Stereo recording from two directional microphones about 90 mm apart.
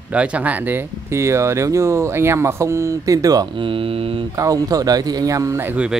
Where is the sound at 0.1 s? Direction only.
15° right (ahead or behind); by 3.4 s 40° right (ahead or behind).